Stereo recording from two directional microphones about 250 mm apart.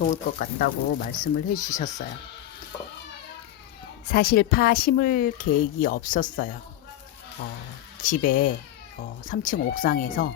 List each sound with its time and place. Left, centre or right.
0.0 s speech: left
4.1 s speech: left
8.0 s speech: left